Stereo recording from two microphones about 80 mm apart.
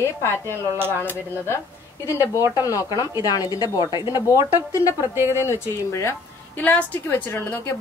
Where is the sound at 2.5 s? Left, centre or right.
Left.